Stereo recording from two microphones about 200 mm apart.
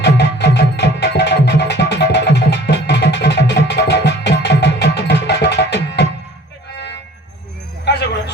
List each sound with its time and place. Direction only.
0.2 s music: 60° left (ahead or behind)
6.7 s toot: 60° left (ahead or behind)